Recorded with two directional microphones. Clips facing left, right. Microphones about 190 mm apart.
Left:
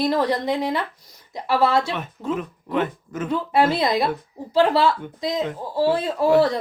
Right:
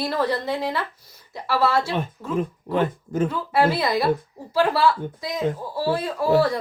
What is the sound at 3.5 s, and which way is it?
A woman's voice, 20° left (ahead or behind).